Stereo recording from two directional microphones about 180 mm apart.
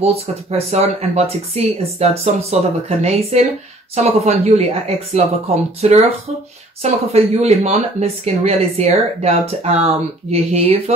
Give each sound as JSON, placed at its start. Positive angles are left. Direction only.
{"t": 0.0, "sound": "speech", "side_deg": -35}